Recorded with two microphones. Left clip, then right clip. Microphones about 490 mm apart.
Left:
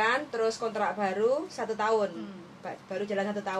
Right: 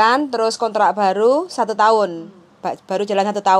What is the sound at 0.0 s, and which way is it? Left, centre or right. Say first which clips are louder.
A woman's voice: right 12 dB; right.